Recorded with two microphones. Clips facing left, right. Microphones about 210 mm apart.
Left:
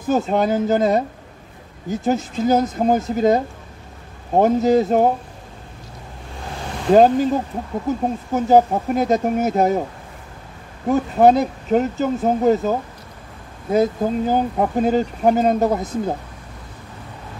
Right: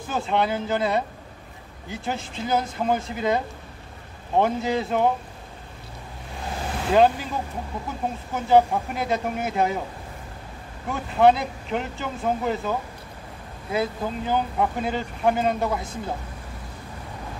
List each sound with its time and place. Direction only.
0.1 s speech: 40° left (ahead or behind)
6.9 s speech: 40° left (ahead or behind)
10.9 s speech: 40° left (ahead or behind)